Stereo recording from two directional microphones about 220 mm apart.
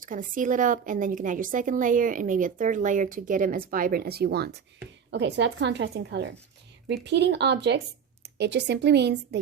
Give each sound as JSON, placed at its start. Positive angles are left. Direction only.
{"t": 0.0, "sound": "a woman's voice", "side_deg": -40}